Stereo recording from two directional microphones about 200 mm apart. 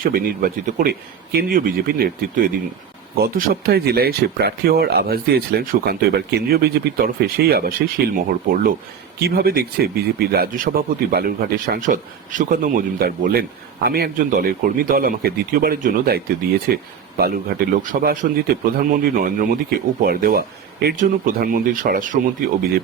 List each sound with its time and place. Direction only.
0.0 s speech: 45° right (ahead or behind)
9.1 s speech: 50° right (ahead or behind)